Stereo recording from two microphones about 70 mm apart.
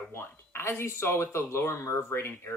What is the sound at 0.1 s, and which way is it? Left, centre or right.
Speech, left.